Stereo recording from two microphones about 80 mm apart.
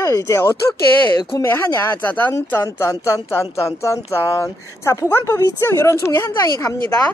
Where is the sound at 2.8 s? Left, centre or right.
Left.